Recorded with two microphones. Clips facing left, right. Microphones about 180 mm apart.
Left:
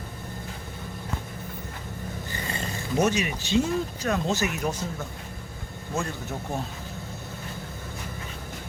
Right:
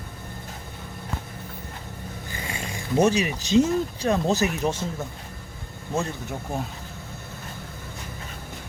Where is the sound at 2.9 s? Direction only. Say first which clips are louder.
Right 4 dB; 30° right (ahead or behind).